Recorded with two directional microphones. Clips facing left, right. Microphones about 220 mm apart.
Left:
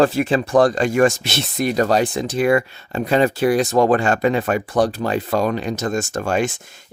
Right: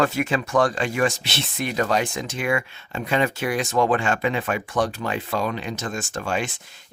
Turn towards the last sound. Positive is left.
turn(degrees=45)  # may be behind; listen again after turning